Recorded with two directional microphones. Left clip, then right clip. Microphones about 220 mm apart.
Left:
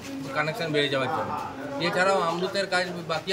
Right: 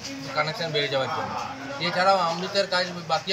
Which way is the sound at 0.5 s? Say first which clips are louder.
Even; 25° left (ahead or behind).